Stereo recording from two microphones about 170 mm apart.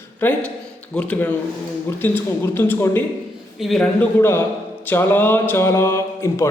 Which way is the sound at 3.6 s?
Centre (ahead or behind).